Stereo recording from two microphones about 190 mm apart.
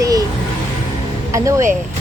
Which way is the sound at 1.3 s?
15° right (ahead or behind).